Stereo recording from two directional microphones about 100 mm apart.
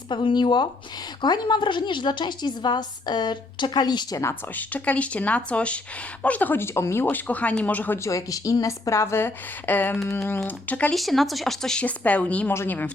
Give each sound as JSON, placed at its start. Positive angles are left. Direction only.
{"t": 0.1, "sound": "a woman's voice", "side_deg": 55}
{"t": 4.5, "sound": "speech", "side_deg": 15}
{"t": 7.9, "sound": "a woman's voice", "side_deg": 30}
{"t": 10.9, "sound": "a woman's voice", "side_deg": 0}